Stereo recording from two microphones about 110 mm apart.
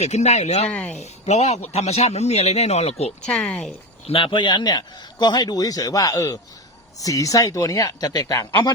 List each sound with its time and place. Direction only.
0.0 s speech: 90° left
0.7 s speech: 10° left (ahead or behind)
0.9 s speech: 85° left
3.2 s speech: 10° left (ahead or behind)
4.0 s a man's voice: 55° left (ahead or behind); by 8.7 s 35° left (ahead or behind)